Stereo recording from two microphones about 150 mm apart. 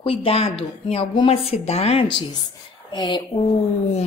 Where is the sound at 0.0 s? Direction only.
40° left (ahead or behind).